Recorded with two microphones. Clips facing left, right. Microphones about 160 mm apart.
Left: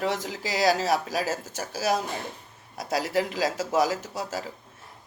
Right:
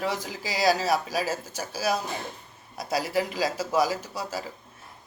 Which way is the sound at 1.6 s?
45° left (ahead or behind).